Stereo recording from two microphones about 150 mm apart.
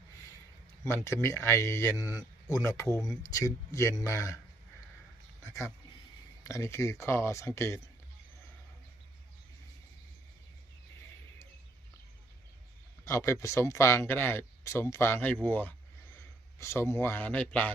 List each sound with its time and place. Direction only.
0.9 s a man's voice: 15° left (ahead or behind)
5.4 s a man's voice: 20° left (ahead or behind)
13.1 s speech: 20° left (ahead or behind)